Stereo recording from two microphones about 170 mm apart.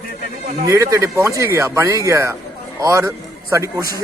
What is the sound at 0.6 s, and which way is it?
A man's voice, 20° right (ahead or behind).